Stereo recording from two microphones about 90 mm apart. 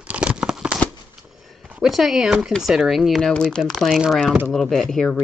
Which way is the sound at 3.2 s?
10° left (ahead or behind).